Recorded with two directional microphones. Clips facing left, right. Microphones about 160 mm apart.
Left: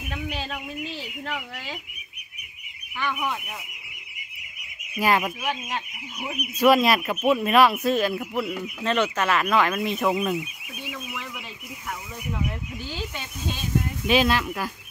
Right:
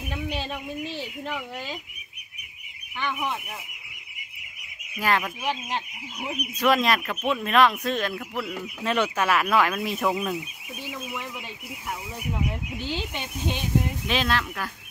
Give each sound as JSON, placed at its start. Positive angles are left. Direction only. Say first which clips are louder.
{"t": 3.0, "sound": "speech", "louder": "left 1 dB", "side_deg": -25}
{"t": 4.9, "sound": "speech", "louder": "left 3 dB", "side_deg": 10}
{"t": 5.4, "sound": "speech", "louder": "even", "side_deg": -25}
{"t": 6.3, "sound": "speech", "louder": "left 4 dB", "side_deg": 10}
{"t": 8.8, "sound": "speech", "louder": "left 1 dB", "side_deg": -10}
{"t": 9.9, "sound": "speech", "louder": "left 3 dB", "side_deg": 5}
{"t": 12.3, "sound": "speech", "louder": "even", "side_deg": -20}
{"t": 14.0, "sound": "speech", "louder": "left 5 dB", "side_deg": 10}